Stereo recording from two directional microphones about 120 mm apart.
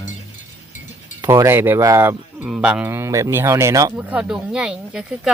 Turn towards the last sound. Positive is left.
turn(degrees=-5)  # may be behind; listen again after turning